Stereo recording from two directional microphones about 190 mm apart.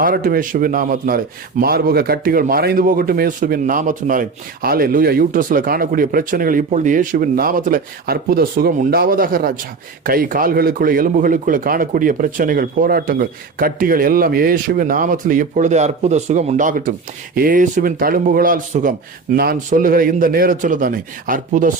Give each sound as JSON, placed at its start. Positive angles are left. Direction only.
{"t": 0.0, "sound": "a man's voice", "side_deg": -50}